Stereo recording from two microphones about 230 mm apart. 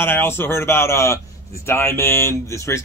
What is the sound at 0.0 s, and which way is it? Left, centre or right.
Speech, centre.